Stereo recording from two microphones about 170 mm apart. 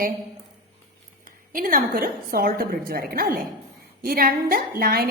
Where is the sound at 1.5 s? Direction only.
55° right (ahead or behind).